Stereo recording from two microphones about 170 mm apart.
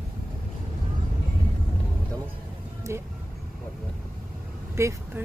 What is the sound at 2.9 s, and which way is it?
Speech, 15° right (ahead or behind).